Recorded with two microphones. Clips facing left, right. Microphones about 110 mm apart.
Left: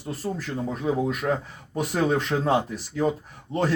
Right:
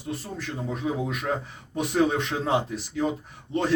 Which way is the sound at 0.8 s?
45° left (ahead or behind).